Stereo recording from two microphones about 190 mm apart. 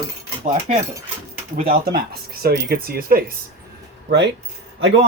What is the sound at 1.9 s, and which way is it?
Speech, 55° right (ahead or behind).